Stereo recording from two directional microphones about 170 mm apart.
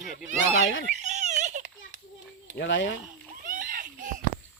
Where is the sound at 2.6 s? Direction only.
90° left.